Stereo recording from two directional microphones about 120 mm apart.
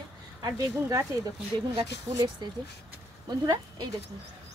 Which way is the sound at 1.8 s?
40° right (ahead or behind).